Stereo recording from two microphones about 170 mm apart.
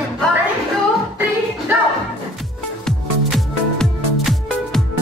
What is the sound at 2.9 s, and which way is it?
Music, centre (ahead or behind).